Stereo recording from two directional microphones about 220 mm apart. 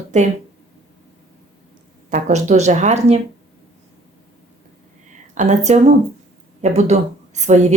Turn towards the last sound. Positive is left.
turn(degrees=-30)  # may be behind; listen again after turning